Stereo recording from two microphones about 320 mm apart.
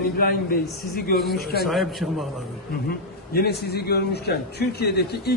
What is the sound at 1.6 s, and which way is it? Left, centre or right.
Speech, centre.